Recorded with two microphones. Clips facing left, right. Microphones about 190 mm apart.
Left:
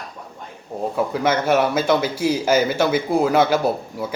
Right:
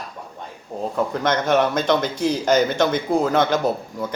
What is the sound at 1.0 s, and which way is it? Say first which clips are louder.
Speech: left 1 dB; 5° left (ahead or behind).